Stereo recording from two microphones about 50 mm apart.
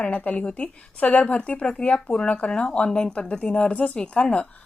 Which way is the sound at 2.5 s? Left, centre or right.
Centre.